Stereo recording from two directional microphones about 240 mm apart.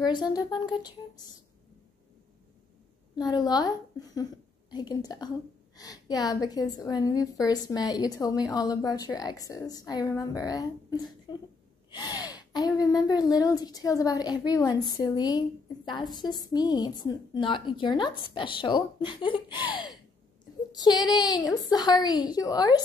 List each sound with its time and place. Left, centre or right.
0.0 s speech: centre
3.2 s speech: centre